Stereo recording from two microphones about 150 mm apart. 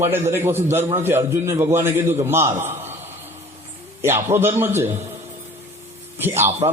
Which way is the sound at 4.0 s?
15° right (ahead or behind).